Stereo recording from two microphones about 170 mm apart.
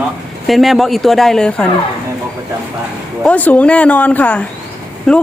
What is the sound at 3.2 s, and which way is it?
Speech, 10° left (ahead or behind).